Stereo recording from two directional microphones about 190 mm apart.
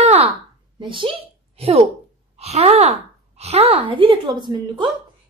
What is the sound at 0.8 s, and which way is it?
A child's voice, 25° right (ahead or behind).